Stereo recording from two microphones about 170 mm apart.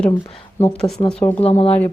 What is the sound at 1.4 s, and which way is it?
Speech, 35° left (ahead or behind).